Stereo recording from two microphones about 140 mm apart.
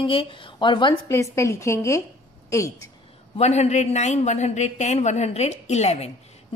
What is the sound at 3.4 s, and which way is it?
A woman's voice, 50° left (ahead or behind).